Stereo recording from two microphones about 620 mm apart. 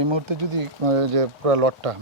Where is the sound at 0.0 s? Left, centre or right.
Right.